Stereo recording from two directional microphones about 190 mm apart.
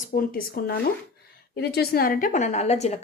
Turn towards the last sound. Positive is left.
turn(degrees=35)  # may be behind; listen again after turning